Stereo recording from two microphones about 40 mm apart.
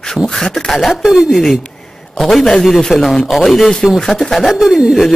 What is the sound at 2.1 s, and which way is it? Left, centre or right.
A man's voice, centre.